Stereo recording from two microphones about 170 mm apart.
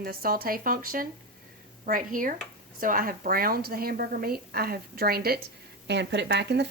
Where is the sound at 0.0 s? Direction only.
60° right (ahead or behind).